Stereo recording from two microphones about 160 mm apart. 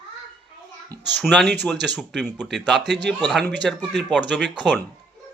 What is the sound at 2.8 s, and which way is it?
Speech, 90° right.